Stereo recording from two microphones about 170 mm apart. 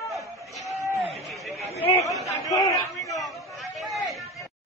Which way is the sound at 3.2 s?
Centre (ahead or behind).